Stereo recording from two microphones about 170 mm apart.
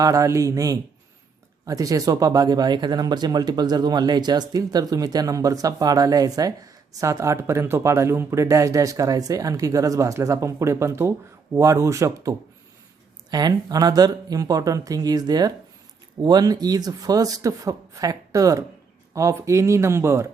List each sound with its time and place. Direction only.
0.0 s speech: 20° right (ahead or behind)
13.3 s speech: 25° right (ahead or behind)